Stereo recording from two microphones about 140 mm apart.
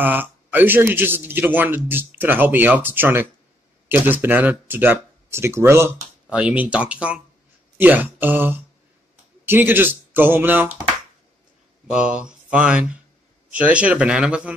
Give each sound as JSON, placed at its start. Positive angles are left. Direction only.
{"t": 0.0, "sound": "a man's voice", "side_deg": -15}
{"t": 11.9, "sound": "a man's voice", "side_deg": -5}